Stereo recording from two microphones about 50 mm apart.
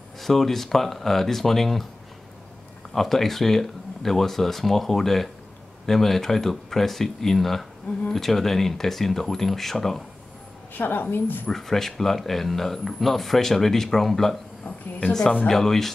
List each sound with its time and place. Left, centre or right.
0.2 s speech: centre
2.9 s speech: centre
10.7 s a woman's voice: left
11.4 s speech: centre
14.6 s a woman's voice: left
15.4 s speech: centre